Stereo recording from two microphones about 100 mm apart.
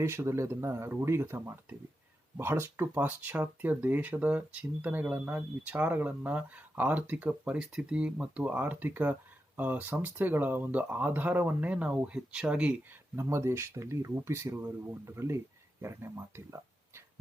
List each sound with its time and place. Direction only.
0.0 s speech: 25° right (ahead or behind); by 12.7 s 10° right (ahead or behind)
13.1 s speech: 30° right (ahead or behind)